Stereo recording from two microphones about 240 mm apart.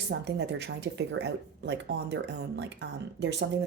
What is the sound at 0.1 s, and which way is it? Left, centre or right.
Speech, right.